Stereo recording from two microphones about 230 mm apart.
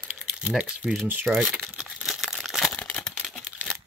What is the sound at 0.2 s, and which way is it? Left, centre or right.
Crumpling, centre.